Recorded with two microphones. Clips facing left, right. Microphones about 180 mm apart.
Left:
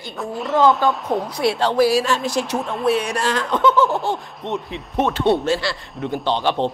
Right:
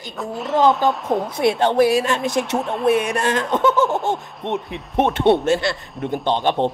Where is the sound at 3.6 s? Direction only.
45° right (ahead or behind).